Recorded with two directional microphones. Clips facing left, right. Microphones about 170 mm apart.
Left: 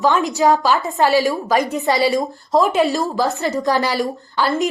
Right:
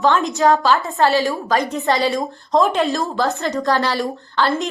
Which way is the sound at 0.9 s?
15° left (ahead or behind).